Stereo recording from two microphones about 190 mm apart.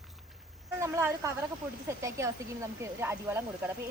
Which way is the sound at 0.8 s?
15° right (ahead or behind).